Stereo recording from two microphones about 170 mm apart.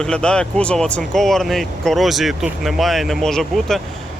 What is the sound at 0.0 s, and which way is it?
Speech, 5° left (ahead or behind).